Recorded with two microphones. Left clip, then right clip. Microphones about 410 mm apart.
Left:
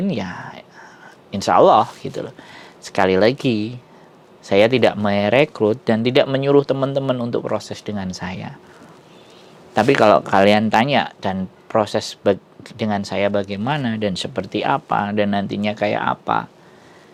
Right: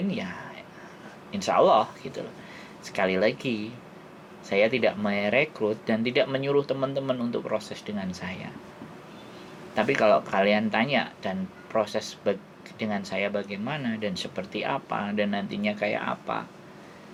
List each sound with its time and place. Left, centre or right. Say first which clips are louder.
0.1 s whispering: left 7 dB; left
1.3 s speech: left 8 dB; left
9.7 s speech: left 8 dB; left